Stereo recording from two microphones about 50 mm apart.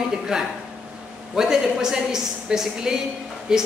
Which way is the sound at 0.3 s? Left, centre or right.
Centre.